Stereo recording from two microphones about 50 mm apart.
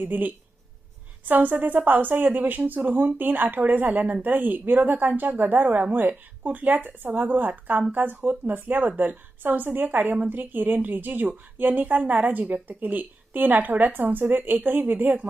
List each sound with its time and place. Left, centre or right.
0.0 s speech: right